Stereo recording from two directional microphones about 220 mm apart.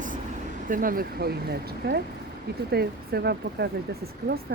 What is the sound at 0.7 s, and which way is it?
Speech, 40° right (ahead or behind).